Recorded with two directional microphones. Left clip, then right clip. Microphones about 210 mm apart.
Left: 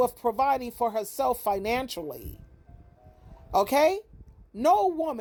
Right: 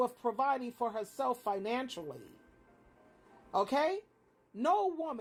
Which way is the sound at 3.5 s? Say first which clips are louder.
Left 9 dB; 50° left (ahead or behind).